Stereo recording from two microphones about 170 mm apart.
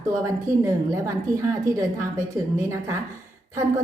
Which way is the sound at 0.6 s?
15° right (ahead or behind).